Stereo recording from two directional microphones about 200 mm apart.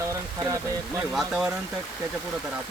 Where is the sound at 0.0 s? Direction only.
15° right (ahead or behind).